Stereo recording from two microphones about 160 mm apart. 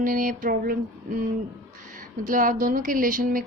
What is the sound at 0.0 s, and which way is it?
A woman's voice, 60° right (ahead or behind).